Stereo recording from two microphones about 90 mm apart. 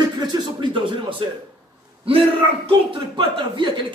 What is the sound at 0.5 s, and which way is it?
Speech, 65° right (ahead or behind).